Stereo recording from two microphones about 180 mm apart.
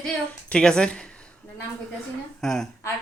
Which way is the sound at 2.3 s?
Centre (ahead or behind).